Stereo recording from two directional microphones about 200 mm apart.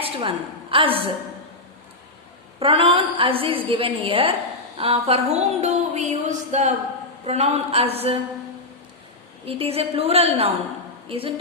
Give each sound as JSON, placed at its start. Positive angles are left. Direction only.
{"t": 0.0, "sound": "a woman's voice", "side_deg": -25}
{"t": 2.6, "sound": "a woman's voice", "side_deg": -25}
{"t": 4.8, "sound": "a sound", "side_deg": -30}
{"t": 9.5, "sound": "a woman's voice", "side_deg": -30}